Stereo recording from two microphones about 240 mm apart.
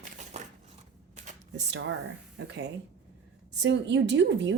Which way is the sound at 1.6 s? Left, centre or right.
Right.